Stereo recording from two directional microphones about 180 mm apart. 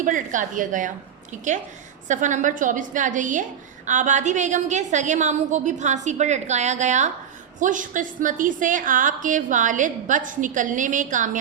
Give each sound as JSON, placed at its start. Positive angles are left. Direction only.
{"t": 0.0, "sound": "a woman's voice", "side_deg": -45}